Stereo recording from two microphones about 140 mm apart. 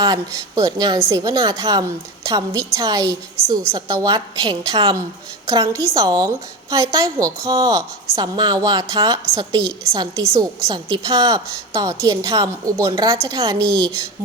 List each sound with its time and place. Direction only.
0.0 s a woman's voice: 25° right (ahead or behind)